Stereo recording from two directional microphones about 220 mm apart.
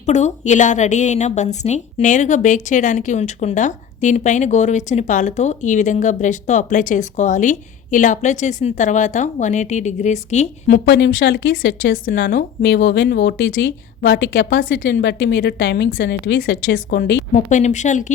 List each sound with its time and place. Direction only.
0.0 s a woman's voice: 30° left (ahead or behind)
10.7 s speech: 55° left (ahead or behind)
12.0 s speech: 40° left (ahead or behind)
17.3 s a woman's voice: 35° left (ahead or behind)